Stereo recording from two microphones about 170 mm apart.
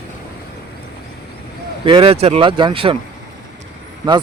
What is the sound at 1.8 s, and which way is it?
Speech, 30° right (ahead or behind).